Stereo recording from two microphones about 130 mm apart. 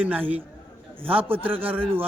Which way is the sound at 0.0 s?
10° right (ahead or behind).